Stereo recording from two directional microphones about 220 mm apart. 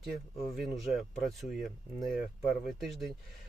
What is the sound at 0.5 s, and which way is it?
Speech, centre (ahead or behind).